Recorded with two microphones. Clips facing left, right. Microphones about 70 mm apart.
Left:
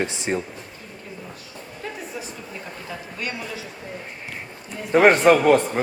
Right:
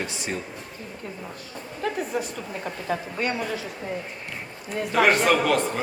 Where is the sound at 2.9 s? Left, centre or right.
Right.